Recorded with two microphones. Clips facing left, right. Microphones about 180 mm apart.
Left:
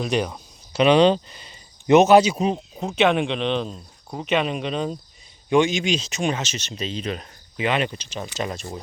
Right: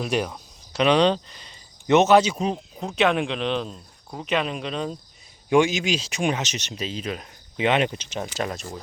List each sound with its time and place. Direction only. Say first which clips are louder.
0.0 s speech: left 2 dB; 5° right (ahead or behind)
5.5 s speech: left 1 dB; 10° right (ahead or behind)
7.5 s speech: right 2 dB; 20° right (ahead or behind)
8.2 s speech: even; centre (ahead or behind)